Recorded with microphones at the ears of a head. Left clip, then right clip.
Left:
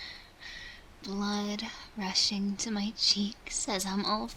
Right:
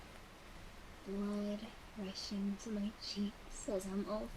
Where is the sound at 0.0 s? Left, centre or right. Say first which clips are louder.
Left 12 dB; left.